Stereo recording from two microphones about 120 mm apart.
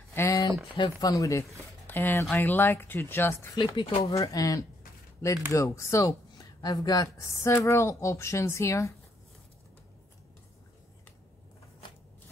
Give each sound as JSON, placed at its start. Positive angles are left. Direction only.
{"t": 0.1, "sound": "a sound", "side_deg": 20}
{"t": 0.7, "sound": "speech", "side_deg": 40}
{"t": 1.1, "sound": "speech", "side_deg": 25}
{"t": 3.5, "sound": "speech", "side_deg": 40}
{"t": 4.1, "sound": "speech", "side_deg": 30}